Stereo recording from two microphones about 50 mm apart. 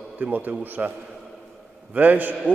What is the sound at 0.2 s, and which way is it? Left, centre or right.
Speech, right.